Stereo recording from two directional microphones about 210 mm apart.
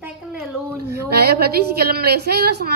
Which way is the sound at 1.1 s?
50° right (ahead or behind).